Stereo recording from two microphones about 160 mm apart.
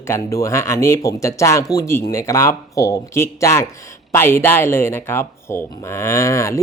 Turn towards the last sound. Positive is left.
turn(degrees=20)  # may be behind; listen again after turning